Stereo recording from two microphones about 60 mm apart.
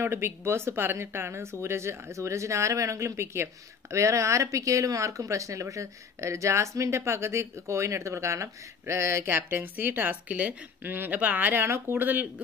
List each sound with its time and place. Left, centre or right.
0.0 s speech: right